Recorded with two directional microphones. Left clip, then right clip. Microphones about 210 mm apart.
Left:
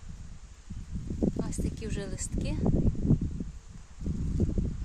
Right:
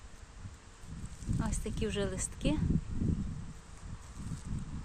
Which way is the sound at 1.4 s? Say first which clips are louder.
Right 1 dB; 5° right (ahead or behind).